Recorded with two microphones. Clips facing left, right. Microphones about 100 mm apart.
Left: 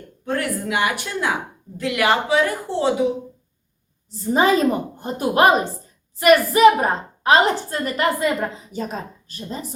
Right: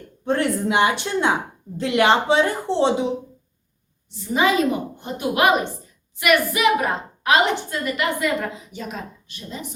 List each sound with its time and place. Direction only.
0.3 s a woman's voice: 25° right (ahead or behind)
4.1 s a woman's voice: 40° left (ahead or behind)